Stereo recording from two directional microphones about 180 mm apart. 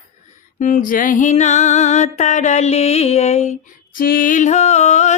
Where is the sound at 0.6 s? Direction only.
45° left (ahead or behind).